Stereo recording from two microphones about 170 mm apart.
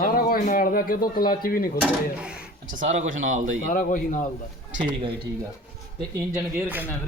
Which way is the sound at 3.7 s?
50° left (ahead or behind).